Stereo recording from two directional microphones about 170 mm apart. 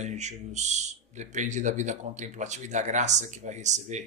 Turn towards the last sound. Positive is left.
turn(degrees=-45)  # may be behind; listen again after turning